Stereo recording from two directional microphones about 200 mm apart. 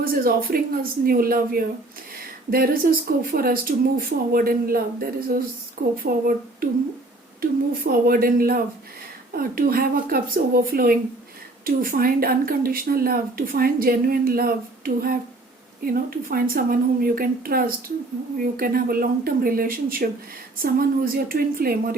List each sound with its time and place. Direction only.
0.0 s speech: 45° right (ahead or behind)
7.9 s speech: 45° right (ahead or behind)